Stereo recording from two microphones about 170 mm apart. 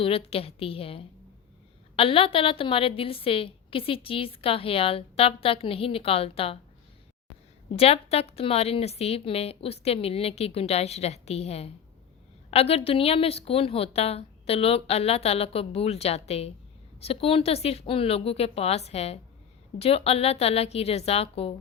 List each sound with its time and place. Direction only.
0.0 s a woman's voice: 35° left (ahead or behind)
7.8 s a woman's voice: 35° left (ahead or behind)